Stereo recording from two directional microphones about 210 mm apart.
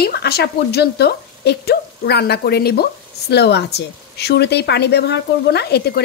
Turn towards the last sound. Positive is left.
turn(degrees=50)  # may be behind; listen again after turning